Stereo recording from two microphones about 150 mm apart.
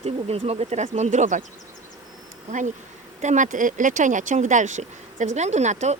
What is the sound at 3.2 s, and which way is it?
Speech, 55° right (ahead or behind).